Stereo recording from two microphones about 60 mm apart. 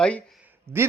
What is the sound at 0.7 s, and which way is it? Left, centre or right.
Speech, right.